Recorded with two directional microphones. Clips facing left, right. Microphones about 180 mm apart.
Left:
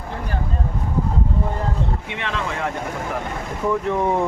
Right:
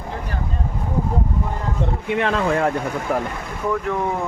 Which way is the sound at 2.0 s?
45° right (ahead or behind).